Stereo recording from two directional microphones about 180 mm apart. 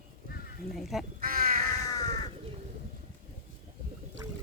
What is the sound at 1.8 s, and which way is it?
Crow, 20° left (ahead or behind).